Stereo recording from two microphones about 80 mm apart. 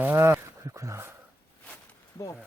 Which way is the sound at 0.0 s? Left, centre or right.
Right.